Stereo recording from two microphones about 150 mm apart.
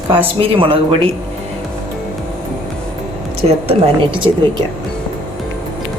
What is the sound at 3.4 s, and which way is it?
Speech, 40° right (ahead or behind).